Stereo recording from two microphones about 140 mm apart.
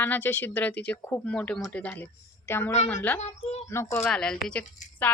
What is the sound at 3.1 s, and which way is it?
Speech, 55° left (ahead or behind).